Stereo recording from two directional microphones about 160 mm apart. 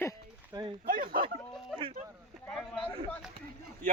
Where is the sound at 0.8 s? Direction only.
65° right (ahead or behind).